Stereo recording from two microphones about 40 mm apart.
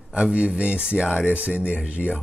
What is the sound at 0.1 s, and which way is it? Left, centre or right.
Speech, right.